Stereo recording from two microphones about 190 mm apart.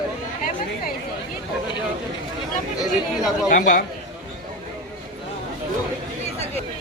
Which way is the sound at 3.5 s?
45° left (ahead or behind).